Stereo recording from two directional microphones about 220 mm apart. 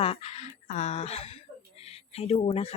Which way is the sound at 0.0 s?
25° left (ahead or behind).